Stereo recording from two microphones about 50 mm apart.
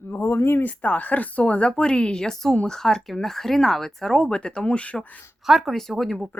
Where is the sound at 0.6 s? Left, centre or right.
Left.